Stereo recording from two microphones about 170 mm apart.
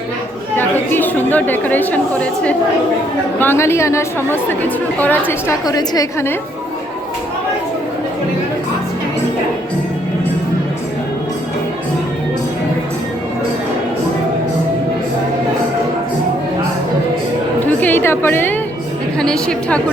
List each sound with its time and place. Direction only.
0.5 s chatter: 10° left (ahead or behind)
3.4 s a woman's voice: 15° left (ahead or behind)
5.6 s a woman's voice: 20° left (ahead or behind)
17.7 s a sound: 10° left (ahead or behind)
19.2 s a woman's voice: 5° left (ahead or behind)